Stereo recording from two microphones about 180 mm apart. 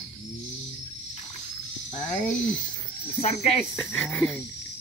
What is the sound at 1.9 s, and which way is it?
Speech, 40° left (ahead or behind).